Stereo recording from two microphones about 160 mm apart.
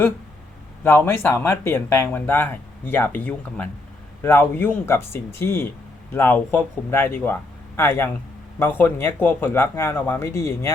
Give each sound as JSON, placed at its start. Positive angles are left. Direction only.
{"t": 0.9, "sound": "speech", "side_deg": 15}